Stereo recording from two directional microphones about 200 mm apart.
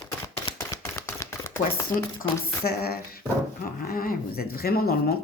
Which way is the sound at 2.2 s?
50° left (ahead or behind).